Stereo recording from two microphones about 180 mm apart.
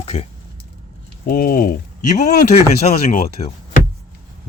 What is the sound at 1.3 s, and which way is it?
Speech, 55° left (ahead or behind).